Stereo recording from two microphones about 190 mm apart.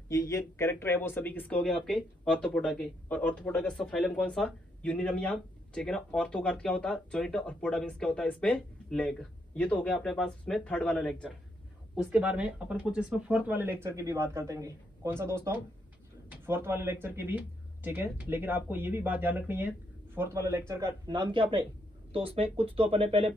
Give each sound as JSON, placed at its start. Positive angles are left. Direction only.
{"t": 0.1, "sound": "speech", "side_deg": 15}
{"t": 21.2, "sound": "speech", "side_deg": -25}